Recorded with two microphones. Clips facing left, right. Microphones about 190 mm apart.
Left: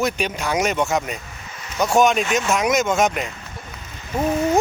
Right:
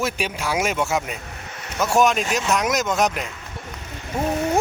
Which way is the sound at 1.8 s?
Centre (ahead or behind).